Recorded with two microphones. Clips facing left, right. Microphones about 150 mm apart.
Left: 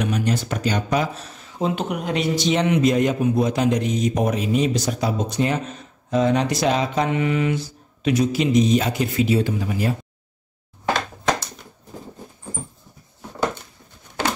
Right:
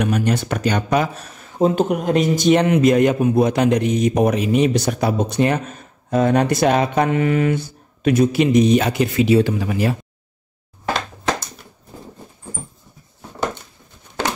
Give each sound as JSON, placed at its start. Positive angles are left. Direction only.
{"t": 0.0, "sound": "speech", "side_deg": -60}